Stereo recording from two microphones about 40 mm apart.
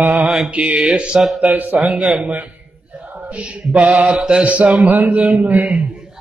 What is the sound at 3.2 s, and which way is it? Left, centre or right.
Mantra, right.